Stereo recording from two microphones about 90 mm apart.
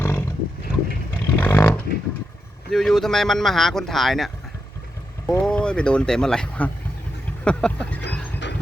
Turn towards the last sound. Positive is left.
turn(degrees=10)  # may be behind; listen again after turning